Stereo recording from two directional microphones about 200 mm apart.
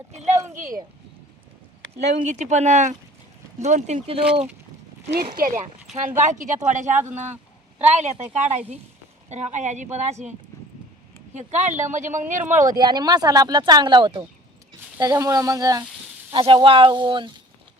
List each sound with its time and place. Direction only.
0.3 s a sound: 15° right (ahead or behind)
2.0 s speech: 35° right (ahead or behind)
5.1 s speech: 45° right (ahead or behind)
11.3 s speech: 35° right (ahead or behind)
12.6 s speech: 20° right (ahead or behind)